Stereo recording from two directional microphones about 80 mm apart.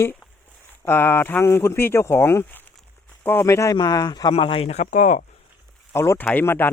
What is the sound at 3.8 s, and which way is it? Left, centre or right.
Speech, left.